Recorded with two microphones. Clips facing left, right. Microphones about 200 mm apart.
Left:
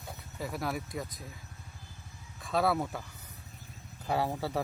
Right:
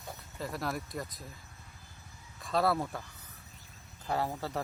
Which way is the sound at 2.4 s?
Centre (ahead or behind).